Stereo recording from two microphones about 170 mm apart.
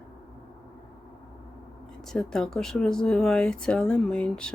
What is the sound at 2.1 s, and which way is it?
Speech, 5° left (ahead or behind).